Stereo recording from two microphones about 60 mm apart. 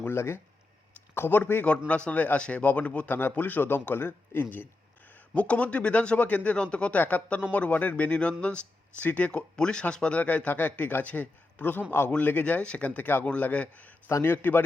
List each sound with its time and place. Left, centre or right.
0.0 s a man's voice: left
2.0 s speech: left
3.1 s a man's voice: left
14.3 s a man's voice: left